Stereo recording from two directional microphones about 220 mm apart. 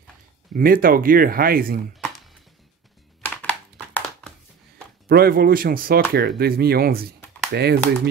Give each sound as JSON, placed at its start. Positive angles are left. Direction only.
{"t": 0.6, "sound": "speech", "side_deg": -40}
{"t": 2.0, "sound": "music", "side_deg": 0}
{"t": 3.2, "sound": "a sound", "side_deg": 10}
{"t": 5.0, "sound": "speech", "side_deg": -45}